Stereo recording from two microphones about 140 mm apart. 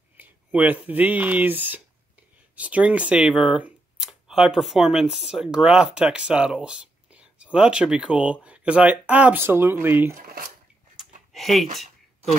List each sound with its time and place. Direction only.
0.2 s speech: 10° right (ahead or behind)
10.1 s speech: 85° right
11.3 s speech: centre (ahead or behind)